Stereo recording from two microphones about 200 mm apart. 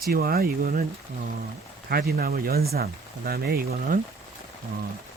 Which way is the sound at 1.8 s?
50° right (ahead or behind).